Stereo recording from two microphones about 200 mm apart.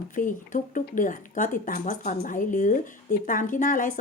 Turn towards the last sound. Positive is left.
turn(degrees=40)  # may be behind; listen again after turning